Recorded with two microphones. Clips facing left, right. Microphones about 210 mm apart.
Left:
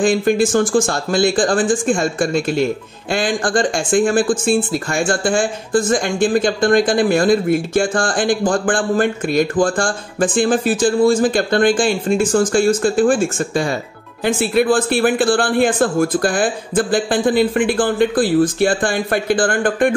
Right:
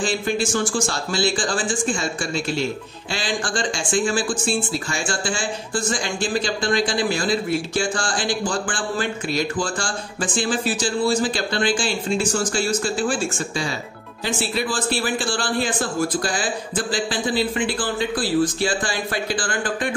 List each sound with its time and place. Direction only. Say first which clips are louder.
0.0 s speech: left 8 dB; 50° left (ahead or behind)